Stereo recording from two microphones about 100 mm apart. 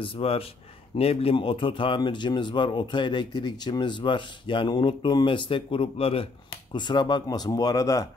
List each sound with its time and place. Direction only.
0.0 s speech: 70° left (ahead or behind)
6.7 s speech: 50° left (ahead or behind)